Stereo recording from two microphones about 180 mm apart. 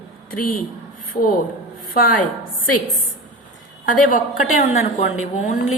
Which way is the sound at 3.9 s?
50° left (ahead or behind).